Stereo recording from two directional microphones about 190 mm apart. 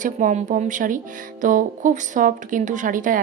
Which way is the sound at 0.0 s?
45° right (ahead or behind).